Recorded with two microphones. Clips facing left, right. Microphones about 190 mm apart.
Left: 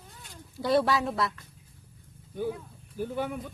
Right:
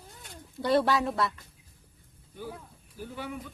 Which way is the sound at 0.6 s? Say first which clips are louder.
Even; centre (ahead or behind).